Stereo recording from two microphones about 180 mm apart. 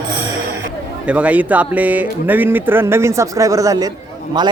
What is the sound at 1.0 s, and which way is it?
Speech, 10° right (ahead or behind).